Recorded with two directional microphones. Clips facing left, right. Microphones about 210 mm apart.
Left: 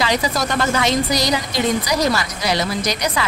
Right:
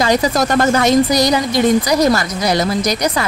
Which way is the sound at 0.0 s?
45° right (ahead or behind).